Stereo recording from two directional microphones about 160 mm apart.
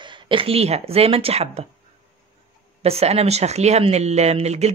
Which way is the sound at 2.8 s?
40° right (ahead or behind).